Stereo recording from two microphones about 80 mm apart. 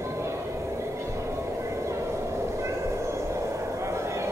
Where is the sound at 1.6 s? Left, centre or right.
Right.